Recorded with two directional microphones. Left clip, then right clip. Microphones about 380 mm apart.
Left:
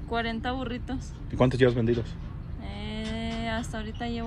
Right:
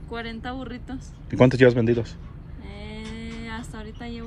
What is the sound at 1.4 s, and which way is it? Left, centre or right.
Speech, centre.